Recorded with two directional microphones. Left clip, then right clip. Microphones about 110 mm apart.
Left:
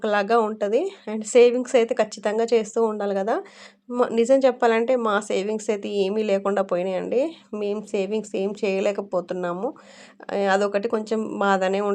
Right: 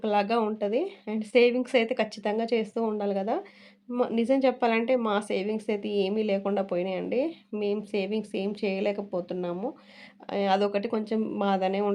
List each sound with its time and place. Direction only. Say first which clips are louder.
0.0 s speech: left 5 dB; 35° left (ahead or behind)